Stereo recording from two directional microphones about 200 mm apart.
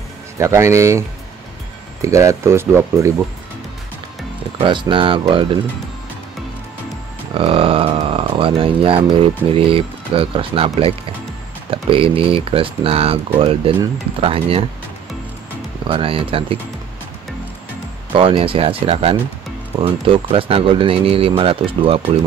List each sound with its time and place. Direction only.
0.4 s speech: 15° right (ahead or behind)
4.6 s speech: 25° right (ahead or behind)
7.3 s speech: 25° right (ahead or behind)
15.9 s speech: 25° right (ahead or behind)
18.1 s speech: 25° right (ahead or behind)